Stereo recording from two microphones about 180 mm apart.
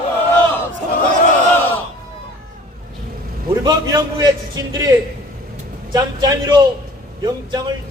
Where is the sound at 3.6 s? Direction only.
20° right (ahead or behind).